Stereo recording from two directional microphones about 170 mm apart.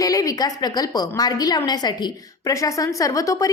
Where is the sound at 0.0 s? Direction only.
20° left (ahead or behind).